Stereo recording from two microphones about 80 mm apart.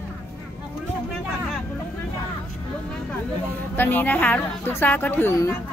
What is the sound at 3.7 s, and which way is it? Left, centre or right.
A woman's voice, left.